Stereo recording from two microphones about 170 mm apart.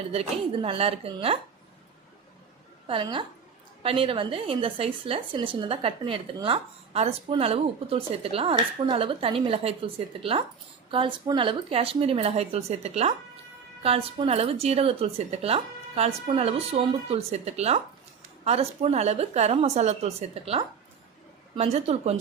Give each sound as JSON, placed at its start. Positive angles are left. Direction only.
{"t": 0.1, "sound": "speech", "side_deg": -35}
{"t": 2.8, "sound": "a woman's voice", "side_deg": -30}